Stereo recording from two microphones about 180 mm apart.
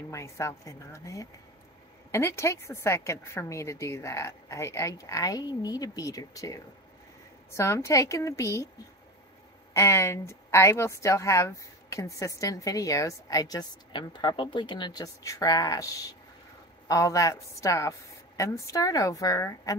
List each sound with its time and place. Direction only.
0.1 s a woman's voice: 15° left (ahead or behind)
9.8 s a woman's voice: 15° left (ahead or behind)